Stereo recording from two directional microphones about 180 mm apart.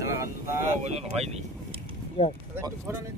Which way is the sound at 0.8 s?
35° right (ahead or behind).